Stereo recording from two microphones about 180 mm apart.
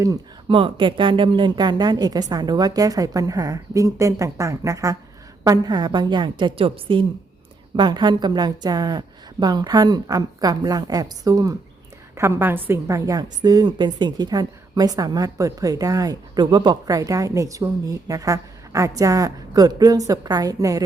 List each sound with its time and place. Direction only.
0.4 s a woman's voice: 30° right (ahead or behind)